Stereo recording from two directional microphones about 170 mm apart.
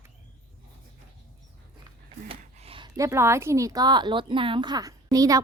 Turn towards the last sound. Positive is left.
turn(degrees=-20)  # may be behind; listen again after turning